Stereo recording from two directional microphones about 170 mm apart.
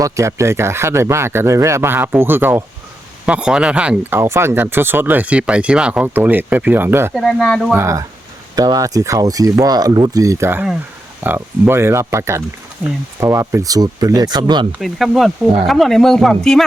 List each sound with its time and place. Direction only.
0.0 s speech: 15° right (ahead or behind)
7.1 s speech: centre (ahead or behind)
7.7 s speech: 15° right (ahead or behind)
14.7 s speech: centre (ahead or behind)